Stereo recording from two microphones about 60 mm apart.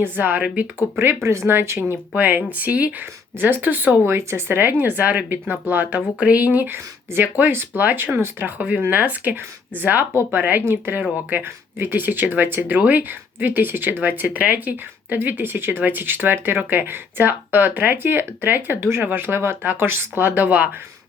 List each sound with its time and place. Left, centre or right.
0.0 s speech: right
1.2 s speech: right
1.5 s speech: right
2.1 s speech: right
4.1 s speech: right
18.8 s speech: right
19.0 s speech: right